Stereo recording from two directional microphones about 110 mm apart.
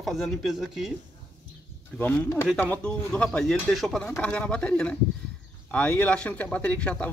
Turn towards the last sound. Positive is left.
turn(degrees=10)  # may be behind; listen again after turning